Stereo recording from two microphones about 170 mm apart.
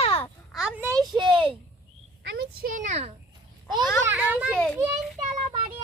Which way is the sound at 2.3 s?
60° right (ahead or behind).